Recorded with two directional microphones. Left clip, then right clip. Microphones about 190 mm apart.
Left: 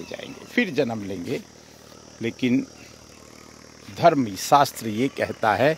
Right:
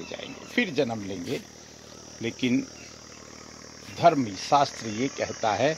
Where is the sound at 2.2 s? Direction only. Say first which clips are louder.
Left 3 dB; 50° left (ahead or behind).